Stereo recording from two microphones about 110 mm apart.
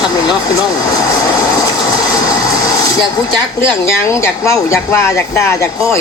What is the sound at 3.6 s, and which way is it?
Speech, 25° left (ahead or behind).